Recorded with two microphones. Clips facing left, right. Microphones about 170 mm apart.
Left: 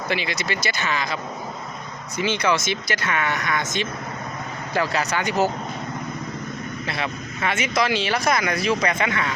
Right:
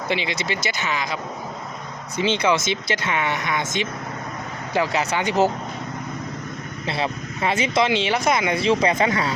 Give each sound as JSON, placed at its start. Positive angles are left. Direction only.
{"t": 0.1, "sound": "speech", "side_deg": -20}
{"t": 6.8, "sound": "speech", "side_deg": -30}